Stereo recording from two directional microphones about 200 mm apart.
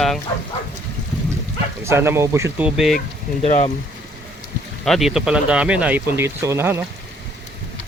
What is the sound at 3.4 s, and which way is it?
Speech, 30° left (ahead or behind).